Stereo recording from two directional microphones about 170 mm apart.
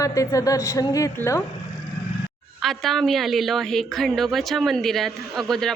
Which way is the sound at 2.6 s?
Centre (ahead or behind).